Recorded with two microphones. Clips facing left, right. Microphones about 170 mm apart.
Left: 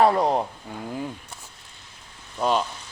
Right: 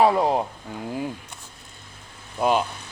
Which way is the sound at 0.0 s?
5° right (ahead or behind).